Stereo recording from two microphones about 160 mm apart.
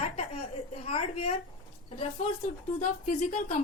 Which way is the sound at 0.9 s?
35° left (ahead or behind).